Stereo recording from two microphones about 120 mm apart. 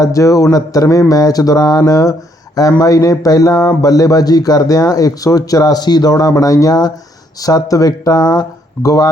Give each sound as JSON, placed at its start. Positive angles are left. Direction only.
{"t": 0.0, "sound": "speech", "side_deg": 25}